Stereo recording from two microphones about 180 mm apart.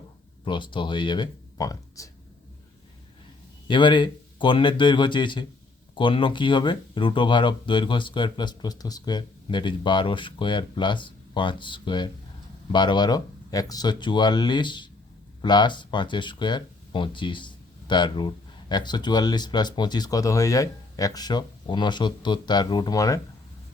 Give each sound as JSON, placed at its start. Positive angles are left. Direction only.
{"t": 0.4, "sound": "speech", "side_deg": 25}
{"t": 3.7, "sound": "speech", "side_deg": 25}